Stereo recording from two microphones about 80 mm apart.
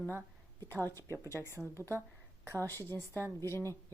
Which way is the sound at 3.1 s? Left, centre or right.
Right.